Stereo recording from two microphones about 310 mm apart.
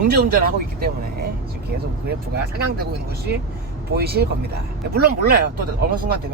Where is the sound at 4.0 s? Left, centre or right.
Right.